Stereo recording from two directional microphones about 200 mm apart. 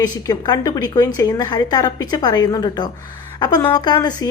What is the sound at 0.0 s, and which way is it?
A woman's voice, 20° left (ahead or behind).